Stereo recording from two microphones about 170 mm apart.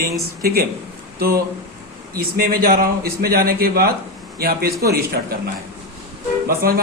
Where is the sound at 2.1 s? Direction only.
60° right (ahead or behind).